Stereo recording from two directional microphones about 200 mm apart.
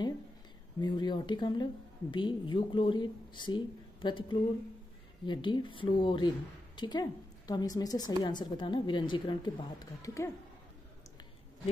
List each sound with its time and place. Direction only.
0.7 s a woman's voice: 20° left (ahead or behind)